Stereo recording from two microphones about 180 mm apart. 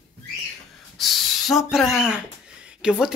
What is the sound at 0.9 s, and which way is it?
A woman's voice, centre (ahead or behind).